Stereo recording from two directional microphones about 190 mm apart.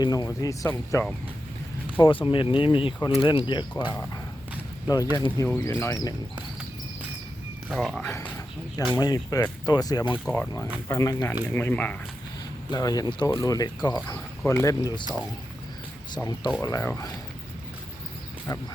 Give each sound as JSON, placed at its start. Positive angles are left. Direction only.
{"t": 0.0, "sound": "speech", "side_deg": 20}
{"t": 2.0, "sound": "speech", "side_deg": 25}
{"t": 5.1, "sound": "speech", "side_deg": 20}
{"t": 7.7, "sound": "speech", "side_deg": 0}
{"t": 9.0, "sound": "speech", "side_deg": 20}
{"t": 10.2, "sound": "speech", "side_deg": 5}
{"t": 12.7, "sound": "speech", "side_deg": 20}
{"t": 16.1, "sound": "speech", "side_deg": 20}